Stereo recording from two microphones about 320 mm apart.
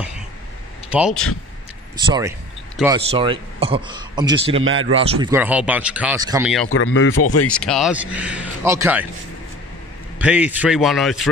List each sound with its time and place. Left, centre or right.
0.8 s speech: centre
2.0 s a man's voice: centre
4.6 s speech: right
4.9 s speech: centre
6.7 s a man's voice: left
7.4 s speech: centre
10.1 s speech: centre